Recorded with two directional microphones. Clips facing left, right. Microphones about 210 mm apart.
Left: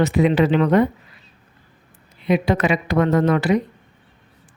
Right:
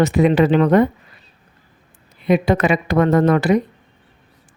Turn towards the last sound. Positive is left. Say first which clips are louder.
# right 3 dB
turn(degrees=-45)  # may be behind; listen again after turning